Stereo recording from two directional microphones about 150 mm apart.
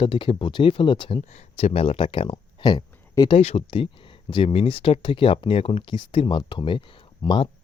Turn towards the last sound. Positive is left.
turn(degrees=35)  # may be behind; listen again after turning